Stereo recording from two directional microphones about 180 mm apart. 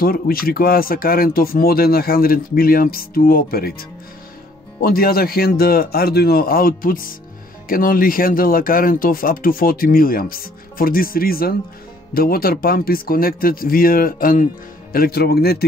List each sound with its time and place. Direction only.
0.0 s speech: 55° left (ahead or behind)
4.8 s speech: 55° left (ahead or behind)